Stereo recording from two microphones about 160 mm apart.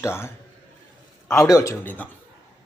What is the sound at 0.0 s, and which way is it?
Speech, 15° left (ahead or behind).